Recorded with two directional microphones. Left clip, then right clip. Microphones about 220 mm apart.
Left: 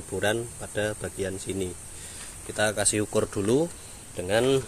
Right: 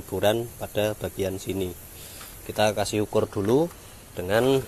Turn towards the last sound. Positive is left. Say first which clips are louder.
# right 2 dB
turn(degrees=-5)  # may be behind; listen again after turning